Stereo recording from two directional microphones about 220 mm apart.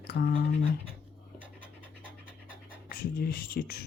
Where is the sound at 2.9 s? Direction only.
45° left (ahead or behind).